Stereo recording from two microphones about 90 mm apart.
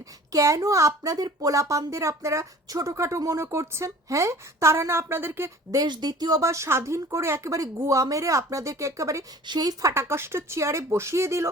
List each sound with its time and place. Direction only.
0.3 s speech: 35° right (ahead or behind)
5.7 s a woman's voice: 50° right (ahead or behind)
9.9 s speech: 30° right (ahead or behind)